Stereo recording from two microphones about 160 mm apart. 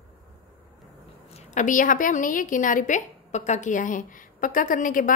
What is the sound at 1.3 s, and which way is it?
A woman's voice, 50° left (ahead or behind).